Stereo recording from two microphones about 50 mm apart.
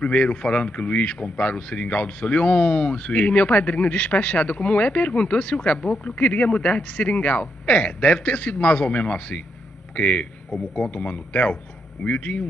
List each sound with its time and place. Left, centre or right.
0.0 s speech: left